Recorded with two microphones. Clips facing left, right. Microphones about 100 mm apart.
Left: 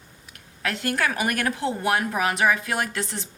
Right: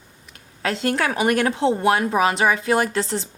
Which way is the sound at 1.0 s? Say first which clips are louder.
Right 5 dB; 25° right (ahead or behind).